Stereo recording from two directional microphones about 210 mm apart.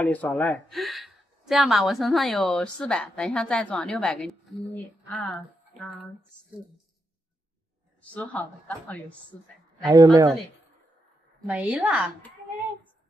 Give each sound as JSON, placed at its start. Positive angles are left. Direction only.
{"t": 0.0, "sound": "a woman's voice", "side_deg": 5}
{"t": 8.1, "sound": "a woman's voice", "side_deg": 5}
{"t": 9.8, "sound": "a woman's voice", "side_deg": -15}
{"t": 11.4, "sound": "a woman's voice", "side_deg": -10}